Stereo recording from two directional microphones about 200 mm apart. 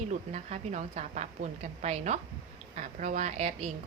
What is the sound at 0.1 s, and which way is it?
A woman's voice, 35° right (ahead or behind).